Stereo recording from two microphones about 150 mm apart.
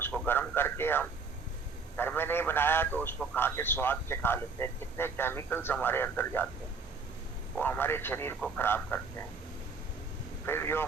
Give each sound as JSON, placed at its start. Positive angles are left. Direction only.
{"t": 0.0, "sound": "a sound", "side_deg": 15}
{"t": 2.0, "sound": "a man's voice", "side_deg": 15}
{"t": 7.5, "sound": "speech", "side_deg": 10}
{"t": 10.4, "sound": "speech", "side_deg": 15}